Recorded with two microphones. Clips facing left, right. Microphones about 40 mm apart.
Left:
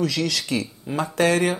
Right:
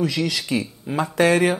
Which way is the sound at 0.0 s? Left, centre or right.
Right.